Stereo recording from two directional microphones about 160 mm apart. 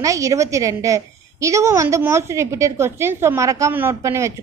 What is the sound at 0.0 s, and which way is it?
A woman's voice, 20° right (ahead or behind).